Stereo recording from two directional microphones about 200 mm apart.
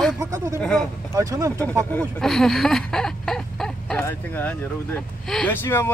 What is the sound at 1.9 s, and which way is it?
Speech, 5° left (ahead or behind).